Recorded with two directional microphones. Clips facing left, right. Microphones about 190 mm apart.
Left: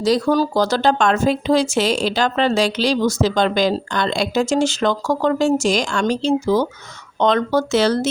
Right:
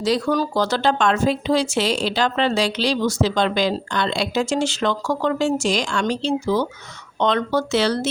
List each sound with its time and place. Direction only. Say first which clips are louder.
0.0 s speech: left 3 dB; 40° left (ahead or behind)